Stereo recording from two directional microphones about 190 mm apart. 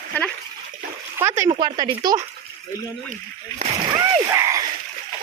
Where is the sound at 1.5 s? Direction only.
25° right (ahead or behind).